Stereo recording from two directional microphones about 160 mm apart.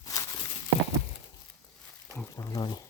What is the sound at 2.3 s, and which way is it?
Speech, 20° left (ahead or behind).